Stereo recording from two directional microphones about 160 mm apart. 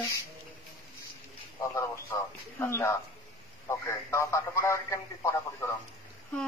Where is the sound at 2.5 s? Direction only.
15° left (ahead or behind).